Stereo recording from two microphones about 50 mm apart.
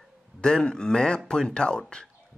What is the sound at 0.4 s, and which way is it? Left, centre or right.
Speech, centre.